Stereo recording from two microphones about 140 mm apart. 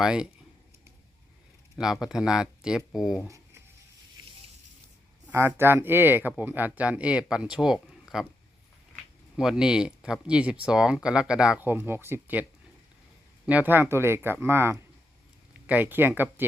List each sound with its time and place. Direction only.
0.0 s speech: 5° right (ahead or behind)
1.7 s speech: 5° right (ahead or behind)
3.2 s writing: 20° right (ahead or behind)
5.3 s speech: 15° right (ahead or behind)
9.3 s speech: 5° right (ahead or behind)